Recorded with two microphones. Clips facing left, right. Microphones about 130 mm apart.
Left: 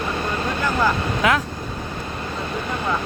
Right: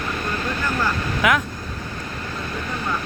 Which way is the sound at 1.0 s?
30° left (ahead or behind).